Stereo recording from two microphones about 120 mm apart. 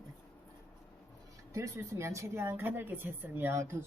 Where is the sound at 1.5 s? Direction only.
25° right (ahead or behind).